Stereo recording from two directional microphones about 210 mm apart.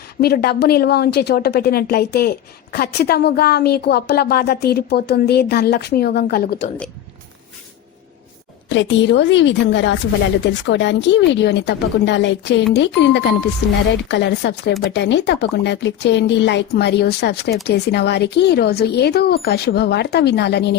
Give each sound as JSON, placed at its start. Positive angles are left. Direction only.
{"t": 0.2, "sound": "speech", "side_deg": 50}
{"t": 8.7, "sound": "speech", "side_deg": 60}